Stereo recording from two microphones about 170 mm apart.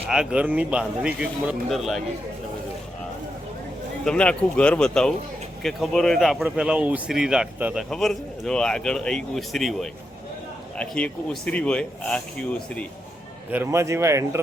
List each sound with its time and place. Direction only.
0.1 s a man's voice: 5° right (ahead or behind)
4.0 s a man's voice: 5° left (ahead or behind)
13.5 s speech: 15° right (ahead or behind)